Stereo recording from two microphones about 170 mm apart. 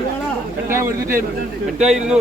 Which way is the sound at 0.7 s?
15° right (ahead or behind).